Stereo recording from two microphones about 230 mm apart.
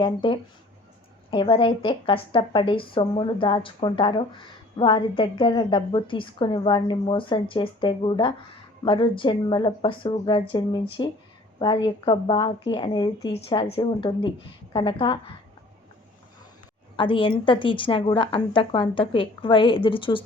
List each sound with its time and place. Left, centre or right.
0.0 s a woman's voice: left
17.0 s a woman's voice: left